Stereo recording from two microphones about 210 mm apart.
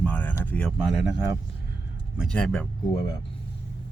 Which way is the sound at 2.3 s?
5° left (ahead or behind).